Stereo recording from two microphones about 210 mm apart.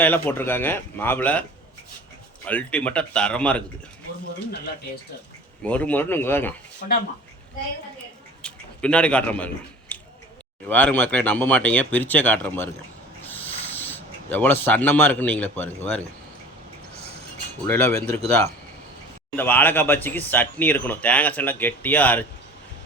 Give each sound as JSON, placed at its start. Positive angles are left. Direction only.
{"t": 0.0, "sound": "speech", "side_deg": 10}
{"t": 5.6, "sound": "speech", "side_deg": 5}
{"t": 8.4, "sound": "a man's voice", "side_deg": 5}
{"t": 9.9, "sound": "a sound", "side_deg": 5}
{"t": 10.7, "sound": "speech", "side_deg": 10}
{"t": 13.2, "sound": "a sound", "side_deg": 10}
{"t": 17.7, "sound": "speech", "side_deg": 10}
{"t": 19.4, "sound": "speech", "side_deg": 10}